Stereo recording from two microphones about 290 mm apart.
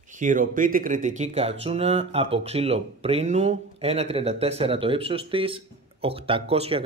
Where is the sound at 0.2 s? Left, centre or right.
Right.